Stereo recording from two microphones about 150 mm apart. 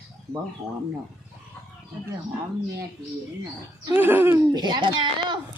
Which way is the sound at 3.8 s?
15° right (ahead or behind).